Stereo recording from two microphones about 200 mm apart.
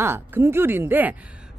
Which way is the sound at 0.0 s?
10° right (ahead or behind).